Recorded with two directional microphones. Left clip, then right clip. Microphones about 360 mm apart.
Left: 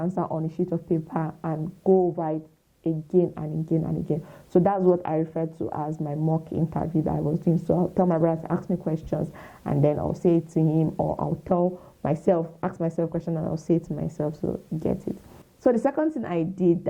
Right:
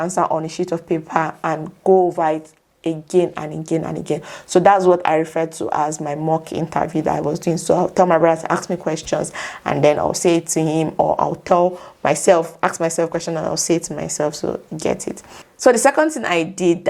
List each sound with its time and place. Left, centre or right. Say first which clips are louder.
0.0 s a woman's voice: right 10 dB; centre
10.9 s a woman's voice: right 11 dB; centre